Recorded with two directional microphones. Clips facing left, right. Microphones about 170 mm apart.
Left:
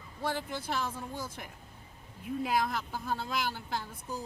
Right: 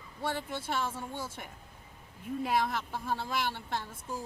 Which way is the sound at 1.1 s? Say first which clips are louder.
Even; 25° right (ahead or behind).